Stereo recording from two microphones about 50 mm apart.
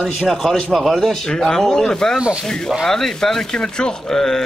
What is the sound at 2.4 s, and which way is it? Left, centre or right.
Speech, centre.